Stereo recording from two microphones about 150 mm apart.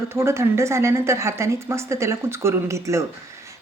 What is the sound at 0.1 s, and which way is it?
A woman's voice, 15° right (ahead or behind).